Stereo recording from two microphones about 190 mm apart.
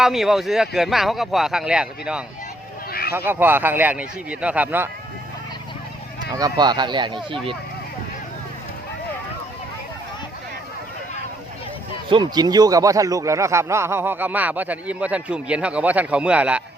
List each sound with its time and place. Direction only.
0.0 s speech: centre (ahead or behind)
2.9 s a sound: 55° left (ahead or behind)
3.2 s a man's voice: 10° right (ahead or behind)
6.3 s speech: 20° right (ahead or behind)
12.0 s a man's voice: 25° right (ahead or behind); by 16.6 s 5° right (ahead or behind)